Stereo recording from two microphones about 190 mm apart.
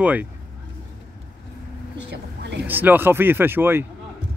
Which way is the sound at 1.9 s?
65° right (ahead or behind).